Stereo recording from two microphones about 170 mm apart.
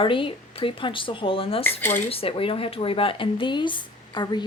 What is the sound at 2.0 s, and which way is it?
Speech, 35° left (ahead or behind).